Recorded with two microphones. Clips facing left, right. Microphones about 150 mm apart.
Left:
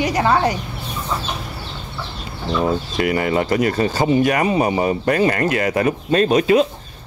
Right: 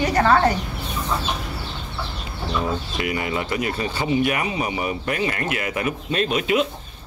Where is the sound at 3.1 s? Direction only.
45° left (ahead or behind).